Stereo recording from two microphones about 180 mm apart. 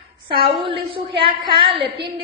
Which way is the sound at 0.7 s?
30° right (ahead or behind).